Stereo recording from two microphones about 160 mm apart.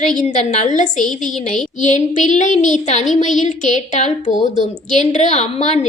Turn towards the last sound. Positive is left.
turn(degrees=45)  # may be behind; listen again after turning